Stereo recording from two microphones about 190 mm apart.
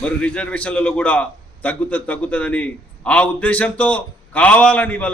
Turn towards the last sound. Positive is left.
turn(degrees=5)  # may be behind; listen again after turning